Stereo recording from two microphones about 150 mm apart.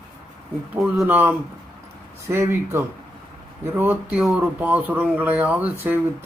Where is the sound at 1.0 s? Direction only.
10° right (ahead or behind).